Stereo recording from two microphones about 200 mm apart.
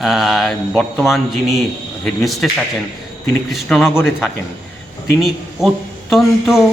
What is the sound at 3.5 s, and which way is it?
A man's voice, centre (ahead or behind).